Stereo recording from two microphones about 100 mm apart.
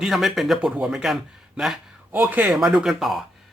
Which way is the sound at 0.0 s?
5° right (ahead or behind).